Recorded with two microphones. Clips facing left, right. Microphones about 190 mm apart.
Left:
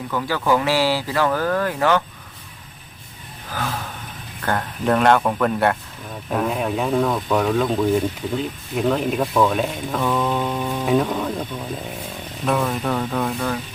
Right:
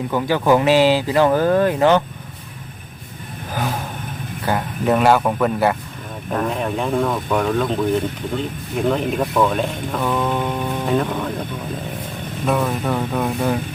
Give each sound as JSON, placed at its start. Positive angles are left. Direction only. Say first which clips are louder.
{"t": 0.1, "sound": "speech", "louder": "right 4 dB", "side_deg": -20}
{"t": 3.5, "sound": "vehicle", "louder": "right 3 dB", "side_deg": -20}
{"t": 4.4, "sound": "speech", "louder": "right 2 dB", "side_deg": -5}
{"t": 10.7, "sound": "music", "louder": "left 2 dB", "side_deg": 5}
{"t": 12.5, "sound": "speech", "louder": "right 1 dB", "side_deg": -5}